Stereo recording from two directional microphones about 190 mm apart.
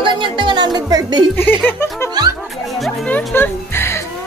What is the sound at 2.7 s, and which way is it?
Music, 5° left (ahead or behind).